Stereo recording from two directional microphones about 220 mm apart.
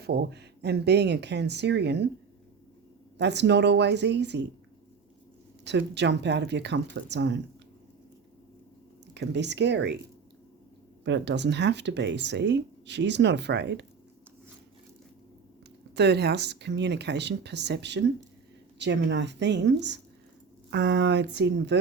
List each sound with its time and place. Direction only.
0.0 s speech: 45° right (ahead or behind)
3.2 s speech: 50° right (ahead or behind)
5.6 s speech: 50° right (ahead or behind)
9.1 s speech: 50° right (ahead or behind)
11.0 s speech: 50° right (ahead or behind)
16.0 s speech: 50° right (ahead or behind)